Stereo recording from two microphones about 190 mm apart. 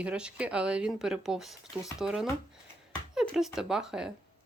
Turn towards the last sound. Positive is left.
turn(degrees=-5)  # may be behind; listen again after turning